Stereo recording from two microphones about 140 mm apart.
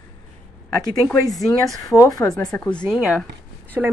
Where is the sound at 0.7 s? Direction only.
30° left (ahead or behind).